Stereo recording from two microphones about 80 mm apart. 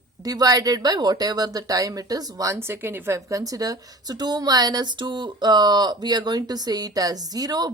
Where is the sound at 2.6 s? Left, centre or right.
Right.